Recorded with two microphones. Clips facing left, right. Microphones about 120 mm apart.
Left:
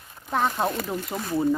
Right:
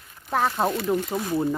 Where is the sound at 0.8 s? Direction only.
5° right (ahead or behind).